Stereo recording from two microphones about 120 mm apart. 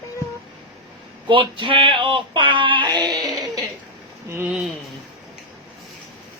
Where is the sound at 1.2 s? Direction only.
45° right (ahead or behind).